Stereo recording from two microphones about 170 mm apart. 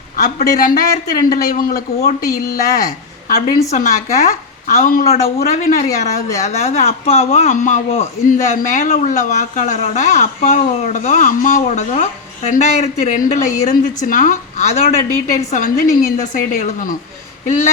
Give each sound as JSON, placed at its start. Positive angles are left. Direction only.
{"t": 0.3, "sound": "a woman's voice", "side_deg": 55}
{"t": 6.4, "sound": "a man's voice", "side_deg": 40}